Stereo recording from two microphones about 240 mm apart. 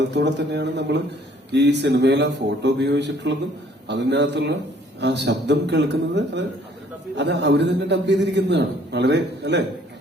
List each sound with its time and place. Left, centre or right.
0.1 s a man's voice: right